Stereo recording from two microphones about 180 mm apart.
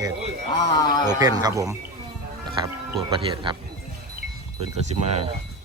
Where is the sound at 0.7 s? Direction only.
20° left (ahead or behind).